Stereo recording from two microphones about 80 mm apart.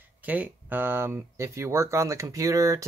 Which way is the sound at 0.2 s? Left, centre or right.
Centre.